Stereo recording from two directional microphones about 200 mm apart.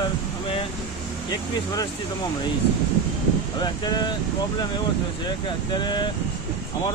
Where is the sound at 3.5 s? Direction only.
20° left (ahead or behind).